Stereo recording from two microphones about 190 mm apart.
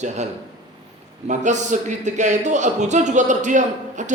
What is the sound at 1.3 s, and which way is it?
A man's voice, 40° right (ahead or behind).